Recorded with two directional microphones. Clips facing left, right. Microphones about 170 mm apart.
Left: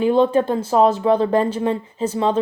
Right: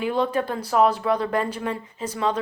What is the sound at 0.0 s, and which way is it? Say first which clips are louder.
Speech: left 8 dB; 30° left (ahead or behind).